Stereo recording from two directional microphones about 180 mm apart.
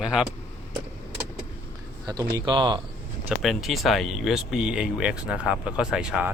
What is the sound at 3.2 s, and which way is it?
Speech, centre (ahead or behind).